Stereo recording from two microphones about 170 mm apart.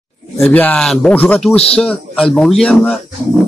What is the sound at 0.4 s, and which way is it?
A man's voice, 10° left (ahead or behind).